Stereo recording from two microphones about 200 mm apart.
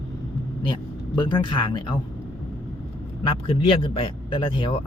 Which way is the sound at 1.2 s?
25° left (ahead or behind).